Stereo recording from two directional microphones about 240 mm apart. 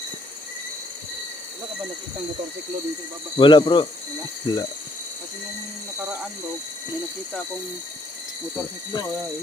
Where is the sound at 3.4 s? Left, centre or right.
Centre.